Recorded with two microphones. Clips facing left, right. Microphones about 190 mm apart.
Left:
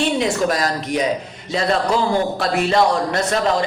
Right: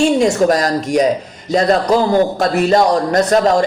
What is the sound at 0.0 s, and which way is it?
A man's voice, 45° right (ahead or behind).